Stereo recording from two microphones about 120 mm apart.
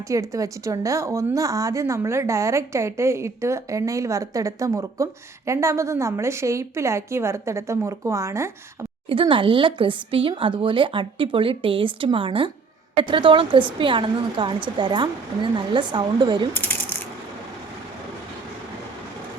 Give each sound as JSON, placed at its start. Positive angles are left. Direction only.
{"t": 0.1, "sound": "speech", "side_deg": -25}
{"t": 9.0, "sound": "a woman's voice", "side_deg": -45}